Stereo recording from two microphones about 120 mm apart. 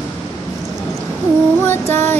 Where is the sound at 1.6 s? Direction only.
20° left (ahead or behind).